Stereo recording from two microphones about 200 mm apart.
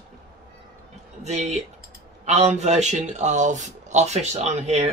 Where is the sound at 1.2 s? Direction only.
35° right (ahead or behind).